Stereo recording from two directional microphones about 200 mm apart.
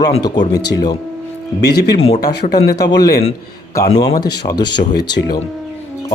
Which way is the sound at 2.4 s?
35° left (ahead or behind).